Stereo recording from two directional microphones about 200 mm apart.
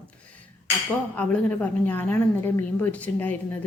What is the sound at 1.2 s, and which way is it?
A woman's voice, 10° left (ahead or behind).